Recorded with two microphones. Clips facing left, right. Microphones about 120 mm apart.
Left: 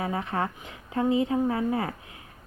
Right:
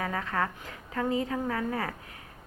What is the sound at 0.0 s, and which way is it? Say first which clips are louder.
Speech: left 2 dB; 25° left (ahead or behind).